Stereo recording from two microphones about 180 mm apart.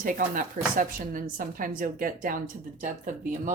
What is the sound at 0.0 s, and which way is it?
Speech, 50° right (ahead or behind).